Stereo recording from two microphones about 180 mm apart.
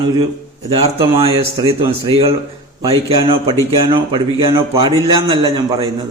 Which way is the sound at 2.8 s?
30° right (ahead or behind).